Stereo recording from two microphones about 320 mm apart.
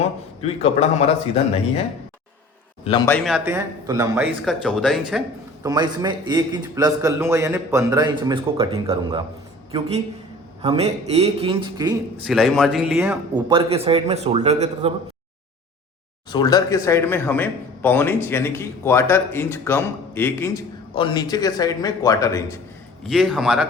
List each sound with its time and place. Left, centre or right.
0.4 s a man's voice: centre
2.8 s speech: centre
5.6 s a man's voice: centre
10.6 s a man's voice: centre
12.2 s a man's voice: centre
16.3 s speech: centre
23.0 s speech: centre